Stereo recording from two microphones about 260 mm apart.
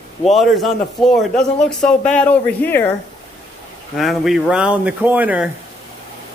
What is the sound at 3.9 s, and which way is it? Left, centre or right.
Speech, centre.